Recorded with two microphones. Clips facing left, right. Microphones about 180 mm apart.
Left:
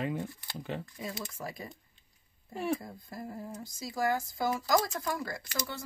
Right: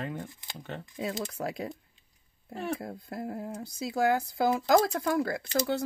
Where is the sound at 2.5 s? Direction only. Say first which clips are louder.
Left 1 dB; 5° left (ahead or behind).